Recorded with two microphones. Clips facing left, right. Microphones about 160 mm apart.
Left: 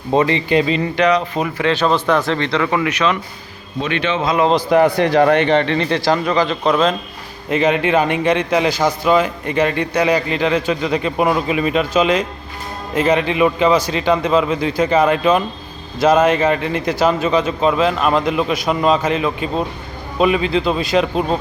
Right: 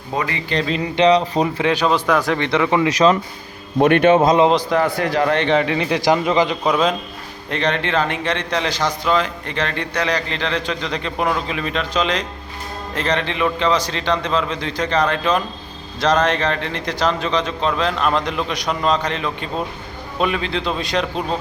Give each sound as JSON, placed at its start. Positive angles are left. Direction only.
{"t": 0.1, "sound": "a man's voice", "side_deg": 25}
{"t": 0.9, "sound": "speech", "side_deg": -30}
{"t": 1.6, "sound": "a man's voice", "side_deg": -10}
{"t": 2.9, "sound": "speech", "side_deg": -35}
{"t": 3.8, "sound": "a man's voice", "side_deg": -55}
{"t": 4.7, "sound": "a man's voice", "side_deg": 20}
{"t": 5.5, "sound": "a man's voice", "side_deg": -5}
{"t": 6.7, "sound": "a man's voice", "side_deg": -10}
{"t": 7.5, "sound": "a man's voice", "side_deg": 5}